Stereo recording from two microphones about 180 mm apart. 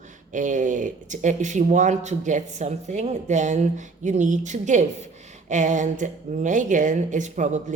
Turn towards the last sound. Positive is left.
turn(degrees=-40)  # may be behind; listen again after turning